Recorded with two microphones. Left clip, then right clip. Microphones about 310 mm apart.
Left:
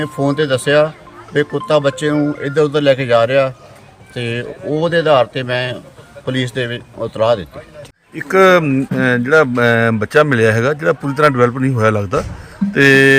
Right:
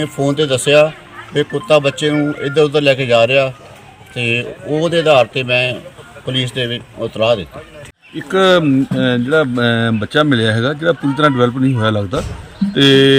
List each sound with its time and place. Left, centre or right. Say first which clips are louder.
0.0 s speech: even; centre